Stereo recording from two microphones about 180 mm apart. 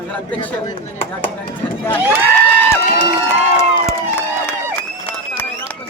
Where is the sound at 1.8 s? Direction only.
10° left (ahead or behind).